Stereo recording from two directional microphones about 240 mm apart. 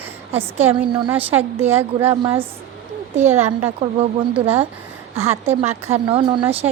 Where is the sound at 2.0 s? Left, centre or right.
Right.